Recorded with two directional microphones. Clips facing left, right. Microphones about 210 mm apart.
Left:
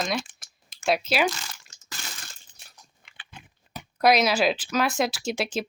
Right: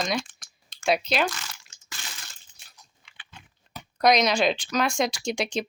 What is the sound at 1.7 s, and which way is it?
Crushing, 40° left (ahead or behind).